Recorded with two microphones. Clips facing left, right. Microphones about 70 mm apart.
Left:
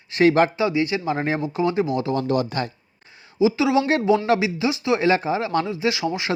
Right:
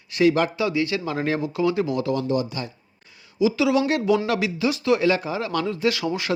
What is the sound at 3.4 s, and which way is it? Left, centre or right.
Speech, left.